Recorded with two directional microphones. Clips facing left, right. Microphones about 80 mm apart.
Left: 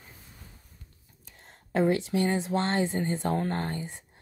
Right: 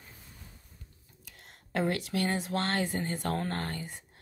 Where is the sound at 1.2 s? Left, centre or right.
Left.